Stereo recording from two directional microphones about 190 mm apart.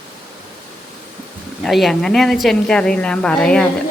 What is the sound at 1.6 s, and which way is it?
A woman's voice, centre (ahead or behind).